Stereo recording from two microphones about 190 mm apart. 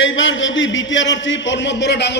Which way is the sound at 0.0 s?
80° left.